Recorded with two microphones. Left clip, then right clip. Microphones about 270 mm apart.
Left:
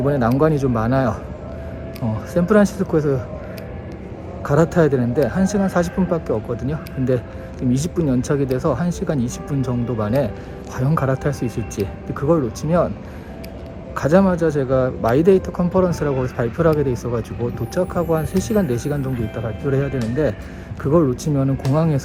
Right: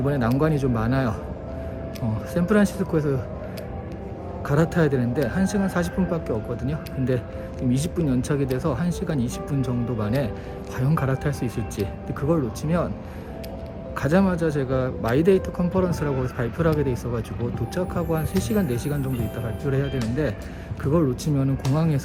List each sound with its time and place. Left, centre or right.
0.0 s a man's voice: centre
2.3 s a man's voice: centre
4.4 s a man's voice: centre
13.9 s a man's voice: centre